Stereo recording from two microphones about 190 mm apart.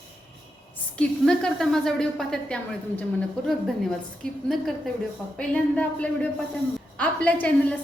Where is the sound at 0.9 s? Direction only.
5° left (ahead or behind).